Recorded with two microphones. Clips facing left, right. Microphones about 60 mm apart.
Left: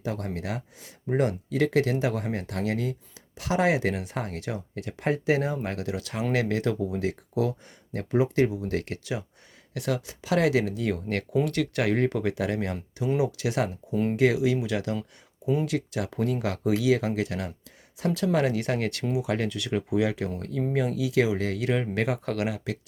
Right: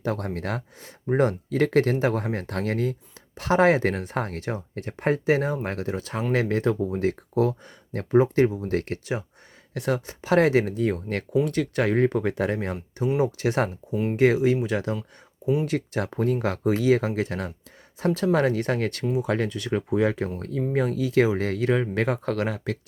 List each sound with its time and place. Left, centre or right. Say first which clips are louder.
0.0 s speech: right 4 dB; right
13.9 s speech: left 1 dB; centre
14.2 s speech: right 4 dB; right